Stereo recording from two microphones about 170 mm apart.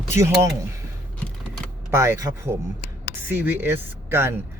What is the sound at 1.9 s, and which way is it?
Speech, 15° right (ahead or behind).